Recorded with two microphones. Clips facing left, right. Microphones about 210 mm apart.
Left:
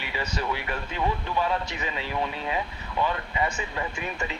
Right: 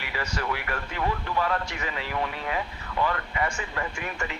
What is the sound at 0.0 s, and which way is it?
Speech, 20° left (ahead or behind).